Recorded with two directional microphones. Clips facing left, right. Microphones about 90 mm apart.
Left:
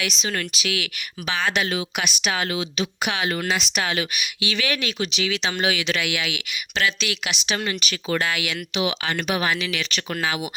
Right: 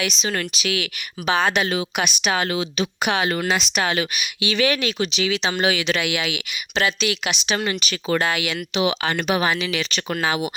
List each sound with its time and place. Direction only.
0.0 s speech: 30° right (ahead or behind)